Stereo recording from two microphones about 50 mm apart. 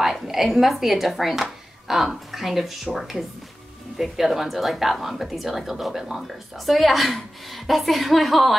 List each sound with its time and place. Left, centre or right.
0.0 s speech: centre